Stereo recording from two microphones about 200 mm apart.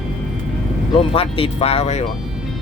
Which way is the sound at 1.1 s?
30° left (ahead or behind).